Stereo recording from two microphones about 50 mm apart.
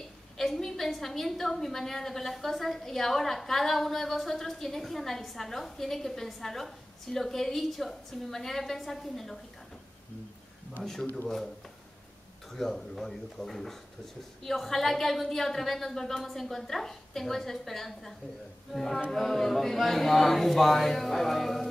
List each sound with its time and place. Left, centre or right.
0.4 s a woman's voice: centre
10.8 s a woman's voice: centre
12.4 s a woman's voice: centre